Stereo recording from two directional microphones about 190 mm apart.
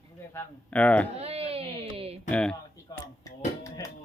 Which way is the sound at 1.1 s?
30° right (ahead or behind).